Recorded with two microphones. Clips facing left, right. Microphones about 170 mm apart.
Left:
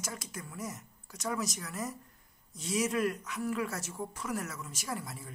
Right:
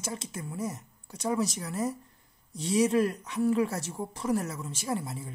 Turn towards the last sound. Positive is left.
turn(degrees=-25)  # may be behind; listen again after turning